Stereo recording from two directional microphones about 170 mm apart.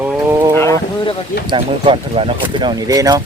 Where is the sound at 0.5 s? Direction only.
15° left (ahead or behind).